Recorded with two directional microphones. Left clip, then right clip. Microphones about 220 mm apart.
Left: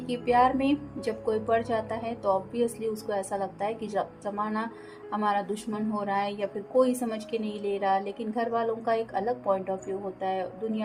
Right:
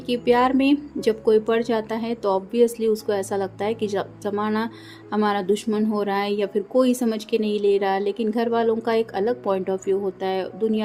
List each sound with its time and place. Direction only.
0.1 s a woman's voice: 40° right (ahead or behind)